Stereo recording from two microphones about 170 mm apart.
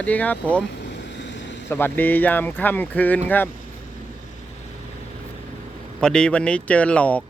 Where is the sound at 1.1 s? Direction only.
90° left.